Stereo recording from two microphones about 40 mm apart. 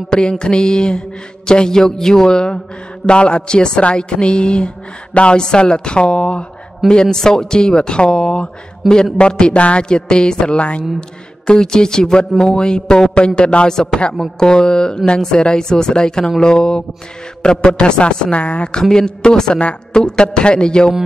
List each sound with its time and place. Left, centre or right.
0.1 s a woman's voice: left
13.7 s speech: centre
18.8 s speech: centre